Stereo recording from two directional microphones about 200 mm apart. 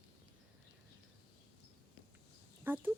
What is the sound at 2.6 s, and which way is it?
Speech, 10° right (ahead or behind).